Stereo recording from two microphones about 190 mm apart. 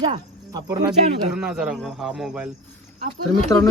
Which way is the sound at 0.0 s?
20° right (ahead or behind).